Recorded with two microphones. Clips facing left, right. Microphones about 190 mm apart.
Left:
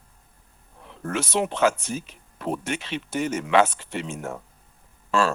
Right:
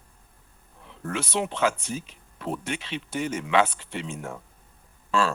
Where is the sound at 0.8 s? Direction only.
45° left (ahead or behind).